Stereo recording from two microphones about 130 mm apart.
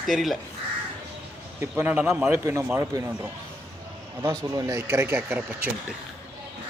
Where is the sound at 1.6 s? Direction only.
15° right (ahead or behind).